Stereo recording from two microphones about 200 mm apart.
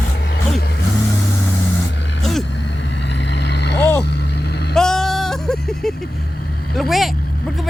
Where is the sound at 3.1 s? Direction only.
60° left (ahead or behind).